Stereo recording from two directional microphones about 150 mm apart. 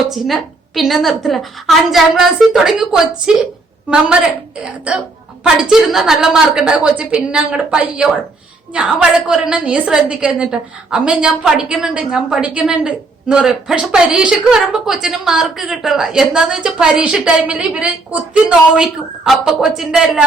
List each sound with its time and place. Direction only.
0.0 s a woman's voice: centre (ahead or behind)
5.4 s a woman's voice: 5° right (ahead or behind)